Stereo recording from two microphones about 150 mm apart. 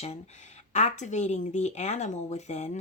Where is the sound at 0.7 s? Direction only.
50° left (ahead or behind).